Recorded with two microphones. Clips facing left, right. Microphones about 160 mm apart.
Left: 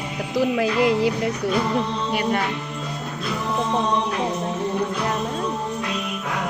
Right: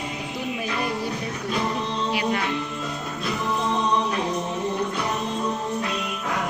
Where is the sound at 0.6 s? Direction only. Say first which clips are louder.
Left 8 dB; 90° left.